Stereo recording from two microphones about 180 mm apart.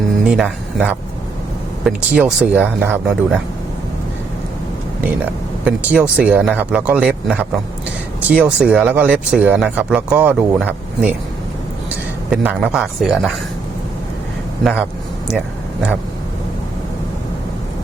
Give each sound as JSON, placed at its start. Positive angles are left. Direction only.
{"t": 0.3, "sound": "speech", "side_deg": -5}
{"t": 5.6, "sound": "speech", "side_deg": -5}
{"t": 12.3, "sound": "speech", "side_deg": -5}
{"t": 14.6, "sound": "speech", "side_deg": 0}